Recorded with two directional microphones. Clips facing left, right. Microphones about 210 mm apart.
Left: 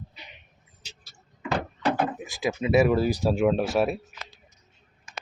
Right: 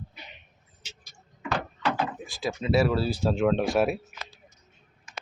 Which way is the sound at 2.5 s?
5° left (ahead or behind).